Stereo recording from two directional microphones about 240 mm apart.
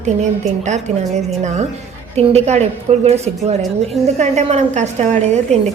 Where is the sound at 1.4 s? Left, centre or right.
Right.